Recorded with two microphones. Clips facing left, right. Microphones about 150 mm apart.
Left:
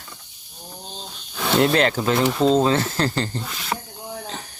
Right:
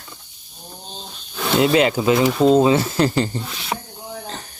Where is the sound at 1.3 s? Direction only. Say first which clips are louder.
Right 2 dB; centre (ahead or behind).